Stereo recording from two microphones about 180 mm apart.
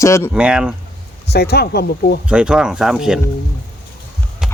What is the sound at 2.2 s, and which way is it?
Speech, 5° right (ahead or behind).